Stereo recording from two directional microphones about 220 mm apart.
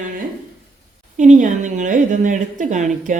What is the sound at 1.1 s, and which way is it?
A woman's voice, 35° right (ahead or behind).